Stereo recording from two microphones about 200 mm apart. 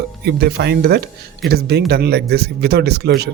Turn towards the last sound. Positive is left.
turn(degrees=-55)  # may be behind; listen again after turning